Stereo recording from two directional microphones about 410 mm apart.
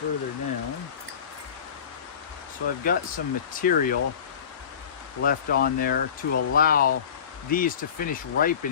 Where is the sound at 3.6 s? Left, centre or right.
Left.